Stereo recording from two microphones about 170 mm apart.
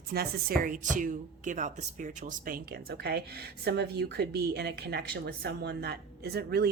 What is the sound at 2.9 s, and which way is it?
A woman's voice, 70° right (ahead or behind).